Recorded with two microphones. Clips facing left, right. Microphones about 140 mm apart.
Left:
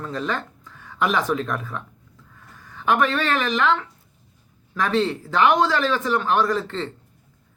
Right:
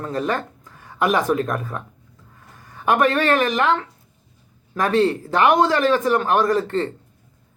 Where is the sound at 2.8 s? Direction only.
45° right (ahead or behind).